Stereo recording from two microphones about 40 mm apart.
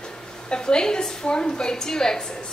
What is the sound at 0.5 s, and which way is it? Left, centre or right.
A woman's voice, left.